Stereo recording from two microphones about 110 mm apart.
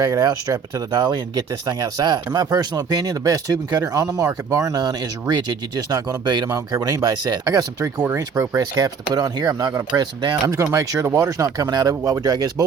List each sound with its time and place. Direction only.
0.0 s speech: 35° right (ahead or behind)